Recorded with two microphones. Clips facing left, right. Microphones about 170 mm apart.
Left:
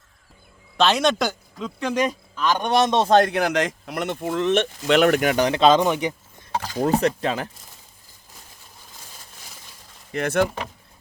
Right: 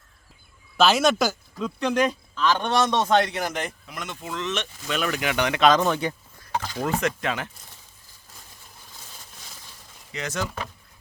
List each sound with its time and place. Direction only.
0.8 s speech: 5° right (ahead or behind); by 3.1 s 20° left (ahead or behind)
3.1 s a man's voice: 40° left (ahead or behind)
3.3 s speech: 80° left; by 5.3 s 60° left (ahead or behind)
5.3 s speech: 35° left (ahead or behind)
5.8 s a sound: 15° left (ahead or behind)
6.8 s speech: 35° left (ahead or behind)
10.1 s speech: 55° left (ahead or behind)